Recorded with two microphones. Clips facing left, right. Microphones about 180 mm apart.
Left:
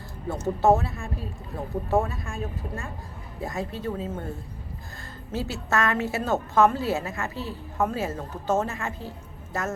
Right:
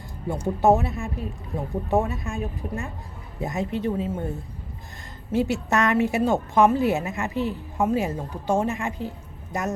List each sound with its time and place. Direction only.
0.4 s a woman's voice: 15° right (ahead or behind)
5.3 s a woman's voice: 15° right (ahead or behind)